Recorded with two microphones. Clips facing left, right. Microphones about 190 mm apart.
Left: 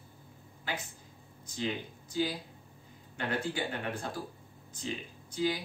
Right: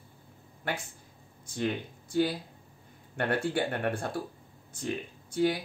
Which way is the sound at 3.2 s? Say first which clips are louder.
Right 5 dB; 60° right (ahead or behind).